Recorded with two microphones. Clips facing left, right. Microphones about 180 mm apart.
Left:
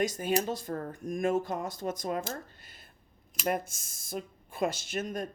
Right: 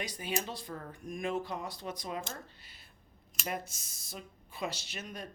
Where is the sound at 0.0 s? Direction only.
45° left (ahead or behind).